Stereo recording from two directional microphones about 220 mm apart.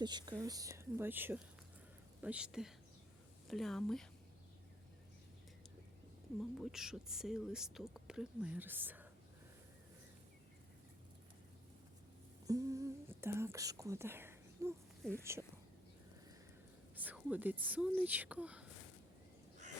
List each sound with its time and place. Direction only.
0.0 s speech: 20° right (ahead or behind); by 4.1 s centre (ahead or behind)
6.7 s speech: centre (ahead or behind)
12.5 s speech: 15° right (ahead or behind)
16.9 s speech: 10° right (ahead or behind)